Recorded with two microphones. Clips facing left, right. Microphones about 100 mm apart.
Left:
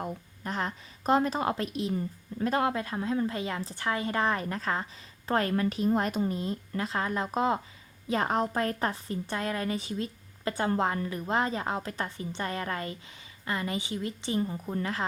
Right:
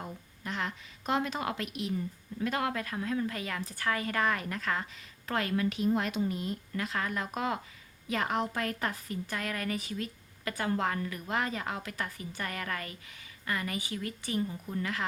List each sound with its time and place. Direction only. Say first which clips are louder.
0.0 s a woman's voice: left 5 dB; 40° left (ahead or behind)
14.4 s a woman's voice: left 3 dB; 35° left (ahead or behind)